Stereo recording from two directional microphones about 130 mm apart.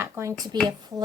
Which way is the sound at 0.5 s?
30° right (ahead or behind).